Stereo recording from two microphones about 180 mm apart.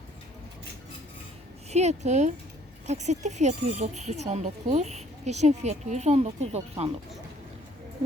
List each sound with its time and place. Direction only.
1.7 s a woman's voice: 40° right (ahead or behind)